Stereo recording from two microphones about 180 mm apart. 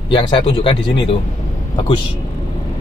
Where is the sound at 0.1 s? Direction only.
30° left (ahead or behind).